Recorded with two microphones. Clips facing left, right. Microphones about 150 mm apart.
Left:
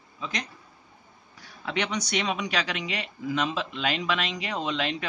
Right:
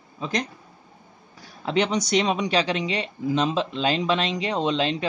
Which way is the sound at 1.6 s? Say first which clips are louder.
Right 7 dB; 30° right (ahead or behind).